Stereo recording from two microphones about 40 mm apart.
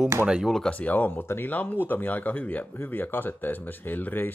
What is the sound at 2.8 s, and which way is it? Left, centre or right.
Speech, left.